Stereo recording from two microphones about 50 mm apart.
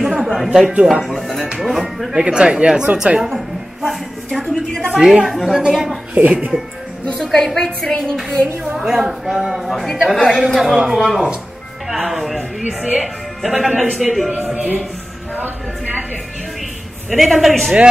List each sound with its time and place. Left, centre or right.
0.0 s a sound: centre
0.5 s a woman's voice: centre
1.0 s music: centre
2.1 s speech: centre
3.2 s a sound: centre
4.3 s a woman's voice: centre
4.8 s a woman's voice: centre
5.2 s a woman's voice: centre
6.1 s speech: right
7.2 s a woman's voice: centre
8.7 s a woman's voice: centre
15.3 s a sound: right
17.1 s a woman's voice: centre